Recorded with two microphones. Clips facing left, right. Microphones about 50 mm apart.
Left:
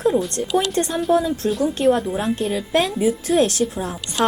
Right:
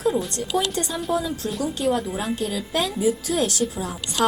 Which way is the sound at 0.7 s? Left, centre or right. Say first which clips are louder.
Left 6 dB; left.